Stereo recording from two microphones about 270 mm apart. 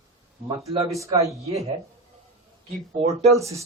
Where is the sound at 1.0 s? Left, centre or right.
Centre.